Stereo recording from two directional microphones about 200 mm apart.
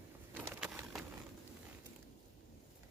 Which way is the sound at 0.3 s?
5° right (ahead or behind).